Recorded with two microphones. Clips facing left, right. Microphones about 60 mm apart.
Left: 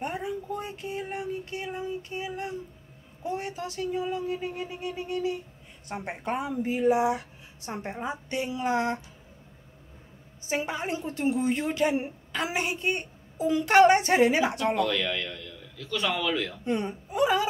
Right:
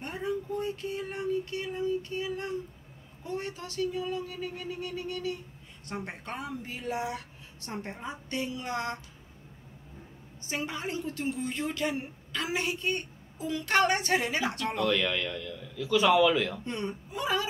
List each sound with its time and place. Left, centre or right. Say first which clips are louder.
0.0 s a sound: left 1 dB; centre
3.3 s a woman's voice: left 4 dB; left
10.4 s a woman's voice: left 4 dB; left
14.9 s a man's voice: right 1 dB; centre
16.6 s speech: left 5 dB; centre